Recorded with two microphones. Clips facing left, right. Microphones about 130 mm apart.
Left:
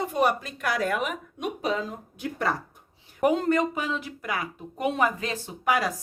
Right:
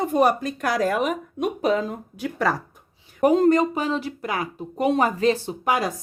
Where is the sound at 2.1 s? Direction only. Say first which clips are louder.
Right 4 dB; 90° right.